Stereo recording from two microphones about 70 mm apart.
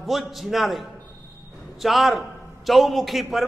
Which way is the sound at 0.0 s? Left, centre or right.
Centre.